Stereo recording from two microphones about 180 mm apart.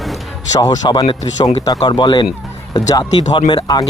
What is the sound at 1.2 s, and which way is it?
Speech, 35° left (ahead or behind).